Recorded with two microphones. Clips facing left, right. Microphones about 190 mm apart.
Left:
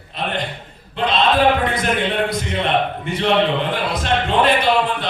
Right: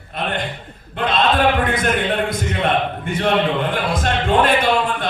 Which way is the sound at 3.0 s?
50° right (ahead or behind).